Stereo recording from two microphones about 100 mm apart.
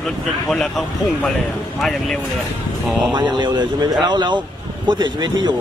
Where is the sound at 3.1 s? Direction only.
50° right (ahead or behind).